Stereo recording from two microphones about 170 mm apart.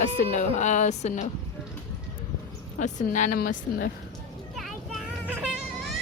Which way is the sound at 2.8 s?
45° left (ahead or behind).